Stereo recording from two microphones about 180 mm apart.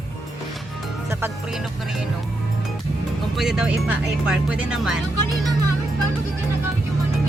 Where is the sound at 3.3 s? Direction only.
Centre (ahead or behind).